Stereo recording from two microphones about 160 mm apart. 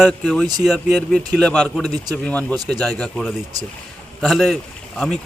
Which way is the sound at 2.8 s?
5° left (ahead or behind).